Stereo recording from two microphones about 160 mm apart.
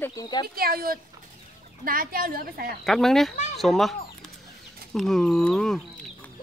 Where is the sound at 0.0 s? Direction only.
20° left (ahead or behind).